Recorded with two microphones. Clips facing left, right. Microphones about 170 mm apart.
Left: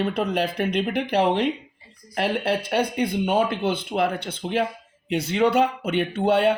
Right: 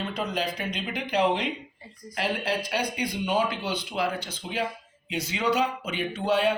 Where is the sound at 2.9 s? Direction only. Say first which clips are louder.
Left 5 dB; 55° left (ahead or behind).